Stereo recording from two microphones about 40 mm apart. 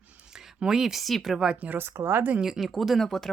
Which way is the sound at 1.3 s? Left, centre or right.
Centre.